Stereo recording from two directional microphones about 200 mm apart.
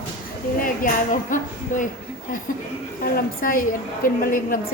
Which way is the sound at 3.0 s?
45° left (ahead or behind).